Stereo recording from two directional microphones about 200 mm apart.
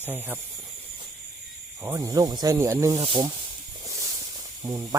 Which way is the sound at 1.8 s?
15° right (ahead or behind).